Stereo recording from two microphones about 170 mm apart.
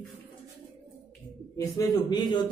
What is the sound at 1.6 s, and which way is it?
Speech, 20° left (ahead or behind).